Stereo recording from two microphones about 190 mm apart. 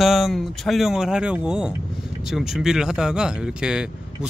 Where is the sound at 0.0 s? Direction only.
Centre (ahead or behind).